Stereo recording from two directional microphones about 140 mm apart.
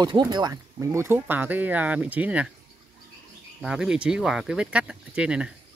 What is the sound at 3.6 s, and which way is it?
Speech, 5° right (ahead or behind).